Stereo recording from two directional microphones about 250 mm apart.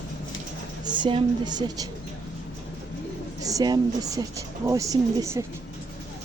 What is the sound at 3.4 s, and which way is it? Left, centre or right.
Speech, centre.